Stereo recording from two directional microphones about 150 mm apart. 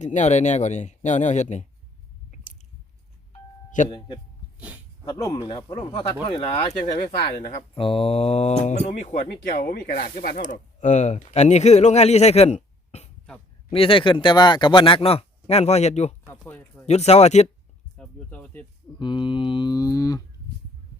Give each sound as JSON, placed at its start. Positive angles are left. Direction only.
{"t": 0.0, "sound": "speech", "side_deg": 50}
{"t": 3.8, "sound": "speech", "side_deg": 30}
{"t": 9.5, "sound": "speech", "side_deg": 60}
{"t": 16.4, "sound": "speech", "side_deg": 10}
{"t": 16.8, "sound": "speech", "side_deg": 50}
{"t": 17.9, "sound": "speech", "side_deg": 5}
{"t": 18.9, "sound": "speech", "side_deg": 35}